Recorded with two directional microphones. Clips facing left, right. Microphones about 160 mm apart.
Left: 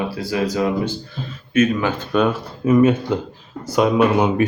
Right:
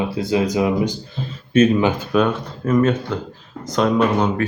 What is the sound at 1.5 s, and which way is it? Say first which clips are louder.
Speech: right 3 dB; 30° right (ahead or behind).